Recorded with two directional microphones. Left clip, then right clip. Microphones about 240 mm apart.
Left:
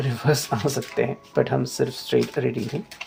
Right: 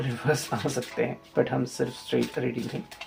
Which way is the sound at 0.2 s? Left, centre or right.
Left.